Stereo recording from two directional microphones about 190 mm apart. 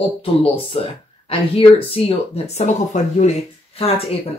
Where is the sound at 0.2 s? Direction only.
30° left (ahead or behind).